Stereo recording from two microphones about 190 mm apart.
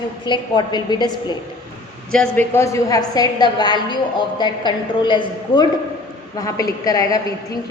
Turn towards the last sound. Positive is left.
turn(degrees=20)  # may be behind; listen again after turning